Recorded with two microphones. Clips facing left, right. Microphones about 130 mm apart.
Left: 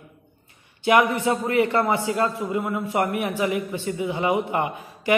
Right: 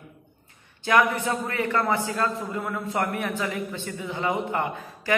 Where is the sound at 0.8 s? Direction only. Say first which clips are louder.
Left 3 dB; 20° left (ahead or behind).